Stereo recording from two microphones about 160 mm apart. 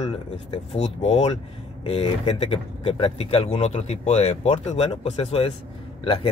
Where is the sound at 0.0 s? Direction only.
45° left (ahead or behind).